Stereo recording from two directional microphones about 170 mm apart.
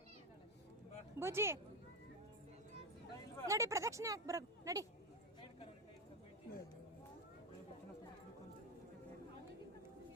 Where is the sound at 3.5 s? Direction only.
20° right (ahead or behind).